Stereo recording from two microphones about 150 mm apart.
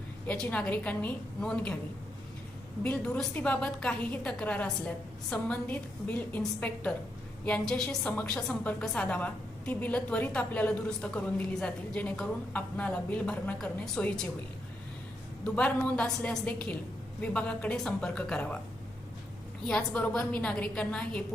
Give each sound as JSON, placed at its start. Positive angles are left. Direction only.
{"t": 0.3, "sound": "a woman's voice", "side_deg": 10}
{"t": 2.8, "sound": "a woman's voice", "side_deg": 5}
{"t": 15.4, "sound": "a woman's voice", "side_deg": 5}
{"t": 19.6, "sound": "a woman's voice", "side_deg": 5}